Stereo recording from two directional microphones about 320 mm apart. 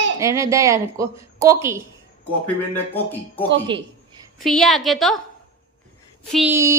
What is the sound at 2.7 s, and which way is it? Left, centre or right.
Speech, centre.